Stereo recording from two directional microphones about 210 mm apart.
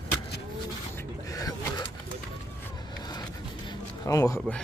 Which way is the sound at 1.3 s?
20° left (ahead or behind).